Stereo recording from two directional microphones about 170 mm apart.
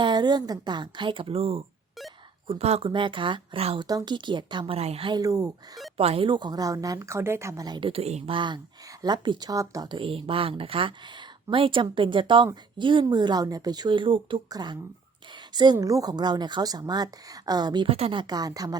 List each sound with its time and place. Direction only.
0.0 s a woman's voice: 25° right (ahead or behind)
3.8 s a woman's voice: 25° right (ahead or behind)
6.0 s a woman's voice: 35° right (ahead or behind)